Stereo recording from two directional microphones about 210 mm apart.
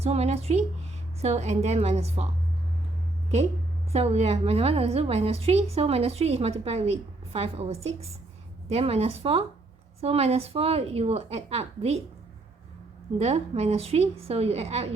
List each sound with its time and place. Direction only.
0.0 s a woman's voice: 30° right (ahead or behind)
3.9 s a woman's voice: 30° right (ahead or behind)
13.1 s a woman's voice: 30° right (ahead or behind)